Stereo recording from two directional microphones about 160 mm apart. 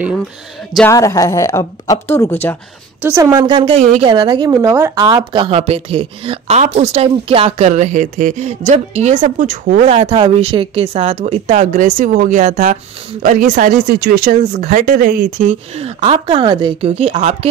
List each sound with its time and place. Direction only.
0.8 s speech: 20° left (ahead or behind)
3.0 s a woman's voice: 15° right (ahead or behind)
3.4 s a woman's voice: 30° right (ahead or behind); by 15.5 s 60° right (ahead or behind)
15.7 s a woman's voice: 40° right (ahead or behind)